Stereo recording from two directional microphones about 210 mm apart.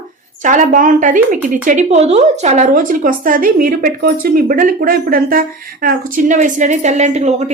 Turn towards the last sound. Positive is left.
turn(degrees=-30)  # may be behind; listen again after turning